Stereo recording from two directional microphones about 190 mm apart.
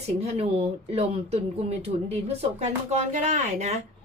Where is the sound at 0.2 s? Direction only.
30° right (ahead or behind).